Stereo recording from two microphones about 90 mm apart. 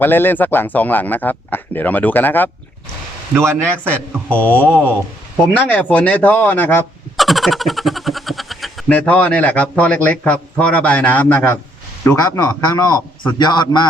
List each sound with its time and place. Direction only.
0.0 s speech: 25° left (ahead or behind)
3.3 s a man's voice: 25° right (ahead or behind)
4.4 s speech: 20° left (ahead or behind)
7.2 s a sound: centre (ahead or behind)
8.9 s a man's voice: 15° left (ahead or behind)
12.1 s a man's voice: 40° left (ahead or behind); by 13.8 s 55° left (ahead or behind)